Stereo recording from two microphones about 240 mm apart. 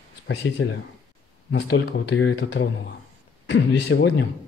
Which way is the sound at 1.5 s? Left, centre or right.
Left.